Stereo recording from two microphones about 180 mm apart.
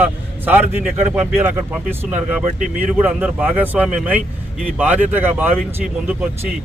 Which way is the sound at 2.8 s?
5° right (ahead or behind).